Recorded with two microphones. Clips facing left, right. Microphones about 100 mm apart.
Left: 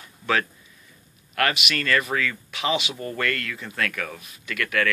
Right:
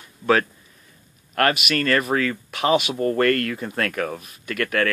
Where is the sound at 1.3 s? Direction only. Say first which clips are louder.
Right 4 dB; 40° right (ahead or behind).